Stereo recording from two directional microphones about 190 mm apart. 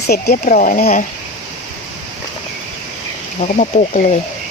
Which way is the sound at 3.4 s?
40° left (ahead or behind).